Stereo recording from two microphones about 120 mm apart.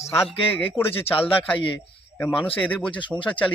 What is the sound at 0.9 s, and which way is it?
Speech, 50° left (ahead or behind).